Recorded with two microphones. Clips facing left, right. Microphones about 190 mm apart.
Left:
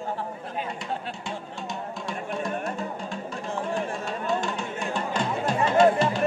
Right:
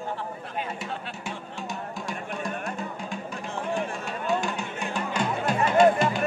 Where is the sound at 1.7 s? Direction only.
Centre (ahead or behind).